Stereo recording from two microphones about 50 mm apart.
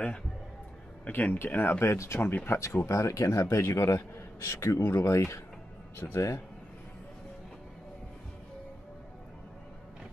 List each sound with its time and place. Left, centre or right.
1.0 s speech: left
1.5 s speech: left
2.5 s a man's voice: left
6.1 s a man's voice: left